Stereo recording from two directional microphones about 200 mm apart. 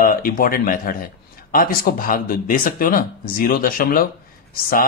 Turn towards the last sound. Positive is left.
turn(degrees=45)  # may be behind; listen again after turning